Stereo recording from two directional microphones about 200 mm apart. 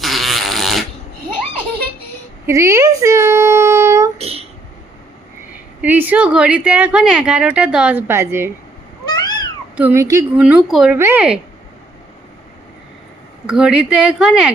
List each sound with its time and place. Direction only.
0.0 s fart: centre (ahead or behind)
2.5 s speech: 15° right (ahead or behind)
4.2 s a sound: 30° right (ahead or behind)
5.8 s a woman's voice: 10° right (ahead or behind)
9.0 s cat: 20° left (ahead or behind)
9.7 s a woman's voice: 10° right (ahead or behind)
10.4 s a woman's voice: 5° right (ahead or behind)
13.5 s a woman's voice: 5° right (ahead or behind)